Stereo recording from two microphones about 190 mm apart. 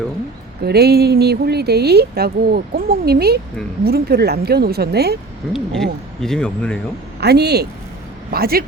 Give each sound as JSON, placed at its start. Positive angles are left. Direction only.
{"t": 0.6, "sound": "speech", "side_deg": -55}
{"t": 5.5, "sound": "speech", "side_deg": 0}
{"t": 7.2, "sound": "speech", "side_deg": -60}